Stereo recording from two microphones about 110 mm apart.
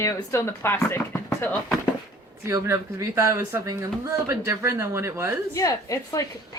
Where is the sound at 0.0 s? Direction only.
25° left (ahead or behind).